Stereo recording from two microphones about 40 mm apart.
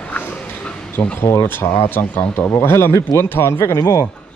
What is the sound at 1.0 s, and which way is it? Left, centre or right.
Speech, left.